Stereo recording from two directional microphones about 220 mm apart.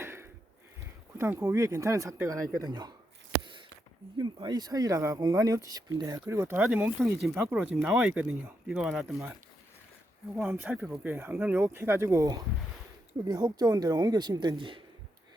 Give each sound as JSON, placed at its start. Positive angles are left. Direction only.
{"t": 0.0, "sound": "a sound", "side_deg": -10}
{"t": 1.2, "sound": "speech", "side_deg": -10}
{"t": 4.2, "sound": "speech", "side_deg": -20}
{"t": 10.3, "sound": "speech", "side_deg": -10}